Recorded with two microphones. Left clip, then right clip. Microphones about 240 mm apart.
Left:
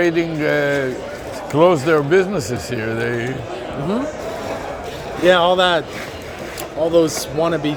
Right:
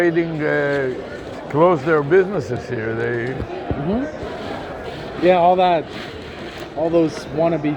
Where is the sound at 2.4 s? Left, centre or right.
Left.